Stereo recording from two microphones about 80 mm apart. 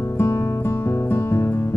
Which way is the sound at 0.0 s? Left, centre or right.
Left.